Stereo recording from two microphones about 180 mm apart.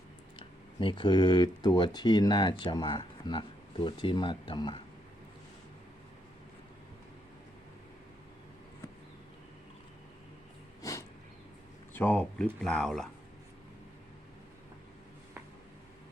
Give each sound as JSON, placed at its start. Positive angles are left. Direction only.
{"t": 0.3, "sound": "speech", "side_deg": 25}
{"t": 10.8, "sound": "a sound", "side_deg": 20}
{"t": 11.9, "sound": "speech", "side_deg": 10}